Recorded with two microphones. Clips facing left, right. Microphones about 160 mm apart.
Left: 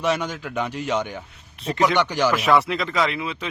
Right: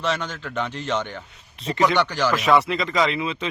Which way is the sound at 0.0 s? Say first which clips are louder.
Left 3 dB; 10° left (ahead or behind).